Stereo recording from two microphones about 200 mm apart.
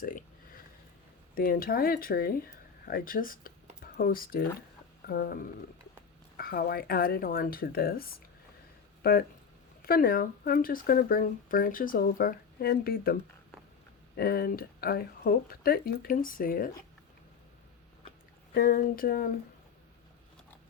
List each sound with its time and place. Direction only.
0.0 s a sound: 45° left (ahead or behind)
1.4 s speech: 45° left (ahead or behind)
9.0 s a sound: 50° left (ahead or behind)
9.8 s speech: 50° left (ahead or behind)
14.2 s speech: 50° left (ahead or behind)
18.5 s speech: 45° left (ahead or behind)